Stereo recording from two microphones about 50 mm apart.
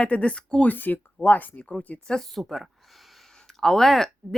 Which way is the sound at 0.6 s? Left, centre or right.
Left.